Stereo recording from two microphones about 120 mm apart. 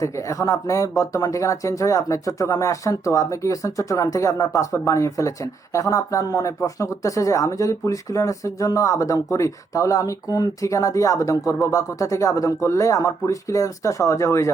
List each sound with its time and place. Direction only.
0.0 s speech: 30° left (ahead or behind)